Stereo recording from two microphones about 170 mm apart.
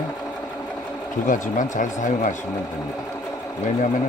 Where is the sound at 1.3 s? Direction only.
50° left (ahead or behind).